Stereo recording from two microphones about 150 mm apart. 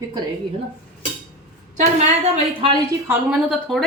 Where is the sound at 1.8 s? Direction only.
45° right (ahead or behind).